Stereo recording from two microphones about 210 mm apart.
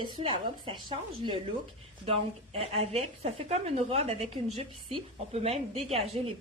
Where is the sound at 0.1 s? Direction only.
25° right (ahead or behind).